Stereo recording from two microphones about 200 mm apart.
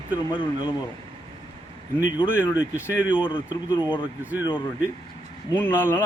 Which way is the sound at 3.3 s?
25° left (ahead or behind).